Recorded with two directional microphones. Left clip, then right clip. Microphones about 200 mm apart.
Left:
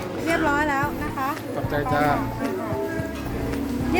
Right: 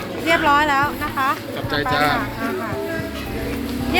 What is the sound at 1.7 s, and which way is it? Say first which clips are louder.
Speech: right 4 dB; 40° left (ahead or behind).